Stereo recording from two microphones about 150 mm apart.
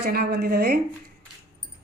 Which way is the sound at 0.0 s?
90° right.